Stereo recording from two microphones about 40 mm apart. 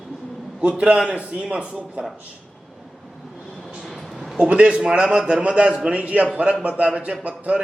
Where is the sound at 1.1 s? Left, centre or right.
Right.